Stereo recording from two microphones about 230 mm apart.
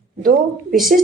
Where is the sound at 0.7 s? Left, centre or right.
Centre.